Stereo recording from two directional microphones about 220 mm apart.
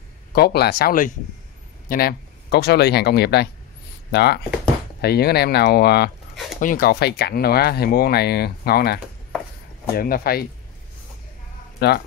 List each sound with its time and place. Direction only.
0.3 s speech: 45° left (ahead or behind)
11.8 s speech: 50° left (ahead or behind)